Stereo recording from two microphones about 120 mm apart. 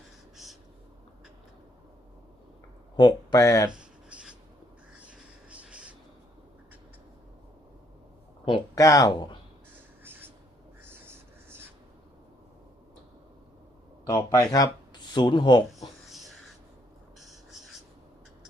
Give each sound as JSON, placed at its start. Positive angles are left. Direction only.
{"t": 2.9, "sound": "speech", "side_deg": 40}
{"t": 3.3, "sound": "speech", "side_deg": 30}
{"t": 3.7, "sound": "writing", "side_deg": -10}
{"t": 4.9, "sound": "a sound", "side_deg": -10}
{"t": 8.7, "sound": "speech", "side_deg": 25}
{"t": 10.0, "sound": "writing", "side_deg": -20}
{"t": 14.1, "sound": "speech", "side_deg": 25}
{"t": 15.8, "sound": "a sound", "side_deg": 0}